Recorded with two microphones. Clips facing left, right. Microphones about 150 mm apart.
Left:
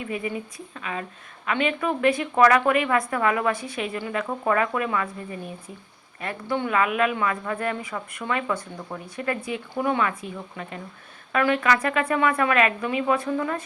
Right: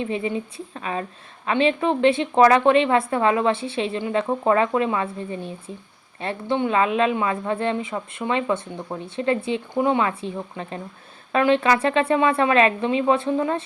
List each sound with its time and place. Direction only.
0.0 s a woman's voice: 25° right (ahead or behind)